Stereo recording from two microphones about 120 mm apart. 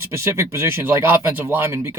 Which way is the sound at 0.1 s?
20° right (ahead or behind).